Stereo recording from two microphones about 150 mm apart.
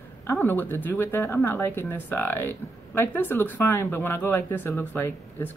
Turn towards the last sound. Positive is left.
turn(degrees=15)  # may be behind; listen again after turning